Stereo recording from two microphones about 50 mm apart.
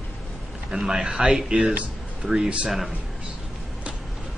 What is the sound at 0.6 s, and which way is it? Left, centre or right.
Speech, centre.